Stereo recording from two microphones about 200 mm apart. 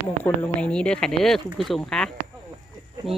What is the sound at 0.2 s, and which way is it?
Speech, 5° left (ahead or behind).